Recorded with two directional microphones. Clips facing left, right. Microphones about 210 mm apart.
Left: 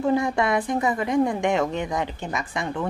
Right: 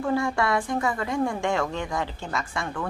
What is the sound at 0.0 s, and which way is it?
A woman's voice, 20° left (ahead or behind).